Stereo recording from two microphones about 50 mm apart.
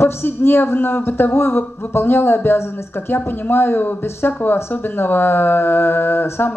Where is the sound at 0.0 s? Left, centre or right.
Left.